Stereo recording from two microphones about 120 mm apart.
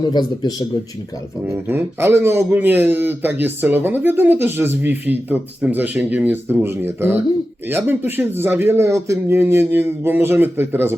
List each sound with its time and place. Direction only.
0.0 s speech: 35° left (ahead or behind)
1.6 s a man's voice: 20° right (ahead or behind)